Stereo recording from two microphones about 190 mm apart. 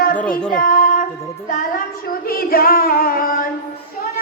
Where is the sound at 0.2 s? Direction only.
5° left (ahead or behind).